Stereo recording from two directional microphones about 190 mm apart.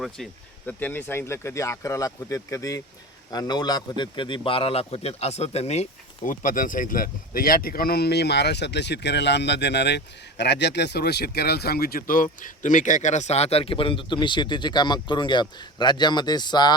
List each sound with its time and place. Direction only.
0.2 s a man's voice: centre (ahead or behind); by 16.7 s 20° left (ahead or behind)